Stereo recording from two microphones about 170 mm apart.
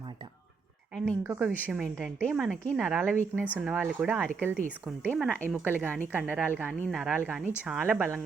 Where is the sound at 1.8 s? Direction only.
5° left (ahead or behind).